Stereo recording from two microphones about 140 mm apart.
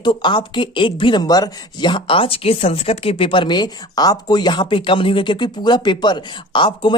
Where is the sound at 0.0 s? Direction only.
35° left (ahead or behind).